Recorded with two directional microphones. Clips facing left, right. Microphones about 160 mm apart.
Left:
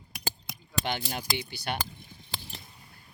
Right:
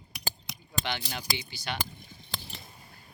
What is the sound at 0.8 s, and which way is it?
Speech, 45° left (ahead or behind).